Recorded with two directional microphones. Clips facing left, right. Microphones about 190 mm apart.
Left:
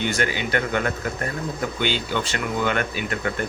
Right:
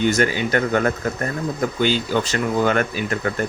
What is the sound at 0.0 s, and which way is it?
Speech, 45° right (ahead or behind).